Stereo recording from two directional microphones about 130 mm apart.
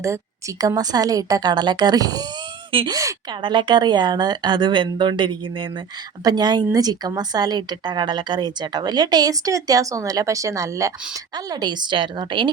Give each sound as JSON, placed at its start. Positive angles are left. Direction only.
{"t": 0.0, "sound": "a woman's voice", "side_deg": -25}